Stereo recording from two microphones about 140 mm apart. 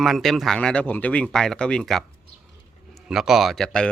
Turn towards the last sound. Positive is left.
turn(degrees=5)  # may be behind; listen again after turning